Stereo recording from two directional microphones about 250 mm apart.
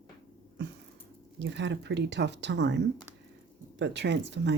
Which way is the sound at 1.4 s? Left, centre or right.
Right.